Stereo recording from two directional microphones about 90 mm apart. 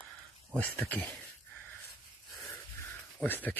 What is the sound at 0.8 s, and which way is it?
Speech, 20° left (ahead or behind).